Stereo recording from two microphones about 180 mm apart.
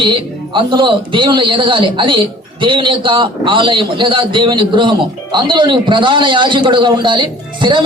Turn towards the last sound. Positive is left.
turn(degrees=-25)  # may be behind; listen again after turning